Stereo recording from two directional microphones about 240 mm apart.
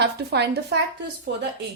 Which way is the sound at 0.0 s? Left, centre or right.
Right.